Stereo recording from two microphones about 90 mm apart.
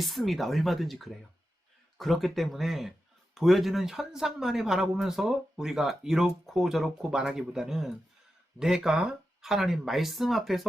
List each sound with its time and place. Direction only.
0.0 s speech: centre (ahead or behind)